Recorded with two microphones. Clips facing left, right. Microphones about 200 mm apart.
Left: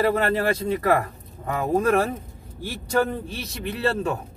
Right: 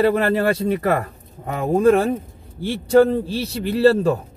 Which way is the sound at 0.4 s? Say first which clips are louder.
Right 4 dB; 30° right (ahead or behind).